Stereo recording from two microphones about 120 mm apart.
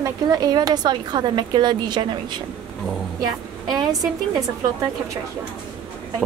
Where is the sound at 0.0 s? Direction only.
30° right (ahead or behind).